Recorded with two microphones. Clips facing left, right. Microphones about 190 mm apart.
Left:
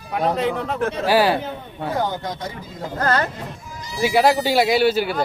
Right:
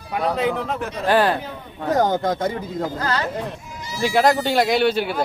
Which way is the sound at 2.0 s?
45° right (ahead or behind).